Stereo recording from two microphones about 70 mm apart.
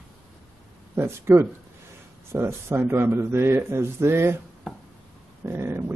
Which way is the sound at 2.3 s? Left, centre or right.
Right.